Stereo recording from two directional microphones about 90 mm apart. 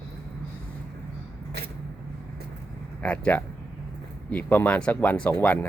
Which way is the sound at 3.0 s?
15° left (ahead or behind).